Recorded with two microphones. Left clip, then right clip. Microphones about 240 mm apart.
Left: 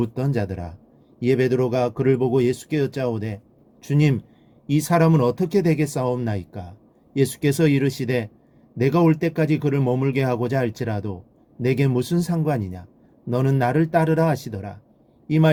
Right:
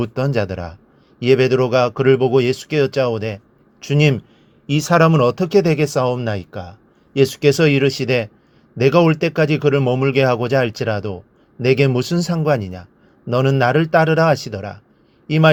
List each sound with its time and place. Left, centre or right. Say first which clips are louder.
0.0 s a man's voice: right 6 dB; centre